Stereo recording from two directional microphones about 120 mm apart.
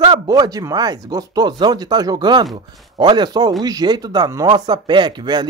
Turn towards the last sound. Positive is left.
turn(degrees=-40)  # may be behind; listen again after turning